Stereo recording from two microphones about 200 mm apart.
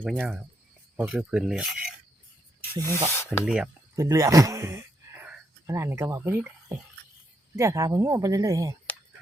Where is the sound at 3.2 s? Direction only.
10° left (ahead or behind).